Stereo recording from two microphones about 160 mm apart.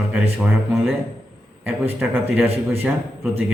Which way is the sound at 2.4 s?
40° right (ahead or behind).